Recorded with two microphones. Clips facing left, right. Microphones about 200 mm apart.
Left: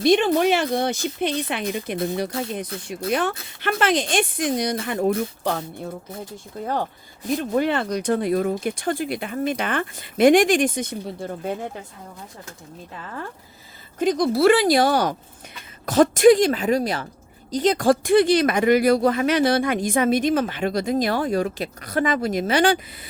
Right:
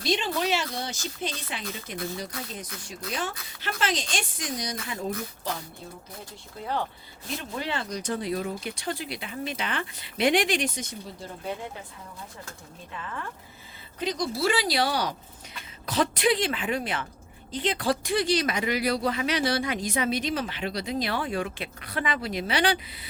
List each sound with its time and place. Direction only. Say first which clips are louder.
0.0 s speech: left 10 dB; 55° left (ahead or behind)
6.3 s speech: left 4 dB; 45° left (ahead or behind)
14.0 s a woman's voice: left 10 dB; 55° left (ahead or behind)